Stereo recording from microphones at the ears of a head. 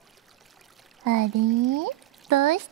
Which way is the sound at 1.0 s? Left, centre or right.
Right.